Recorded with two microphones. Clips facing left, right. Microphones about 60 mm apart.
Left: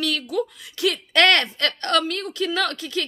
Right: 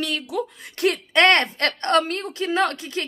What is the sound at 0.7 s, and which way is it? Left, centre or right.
A woman's voice, right.